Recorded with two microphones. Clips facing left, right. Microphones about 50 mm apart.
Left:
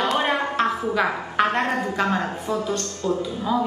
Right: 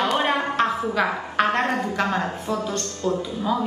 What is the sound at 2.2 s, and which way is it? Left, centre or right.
Speech, left.